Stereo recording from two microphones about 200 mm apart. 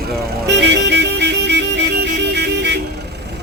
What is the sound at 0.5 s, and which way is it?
Music, 60° right (ahead or behind).